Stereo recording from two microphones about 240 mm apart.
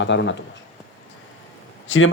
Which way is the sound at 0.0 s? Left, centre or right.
Left.